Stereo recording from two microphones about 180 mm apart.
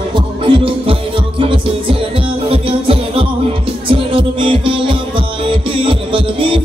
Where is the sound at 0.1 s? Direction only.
30° right (ahead or behind).